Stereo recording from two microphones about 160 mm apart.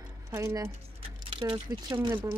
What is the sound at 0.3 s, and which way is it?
Speech, 15° right (ahead or behind).